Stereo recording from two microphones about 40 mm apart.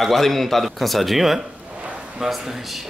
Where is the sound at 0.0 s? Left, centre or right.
Centre.